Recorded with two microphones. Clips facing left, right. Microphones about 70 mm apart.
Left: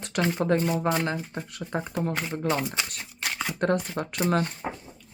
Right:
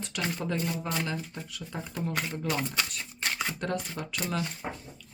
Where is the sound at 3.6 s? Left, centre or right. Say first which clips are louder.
Left 7 dB; left.